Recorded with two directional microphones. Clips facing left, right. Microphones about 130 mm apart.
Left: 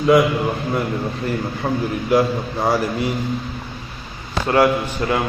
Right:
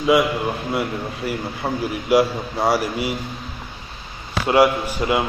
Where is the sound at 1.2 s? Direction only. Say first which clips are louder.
Left 1 dB; 10° right (ahead or behind).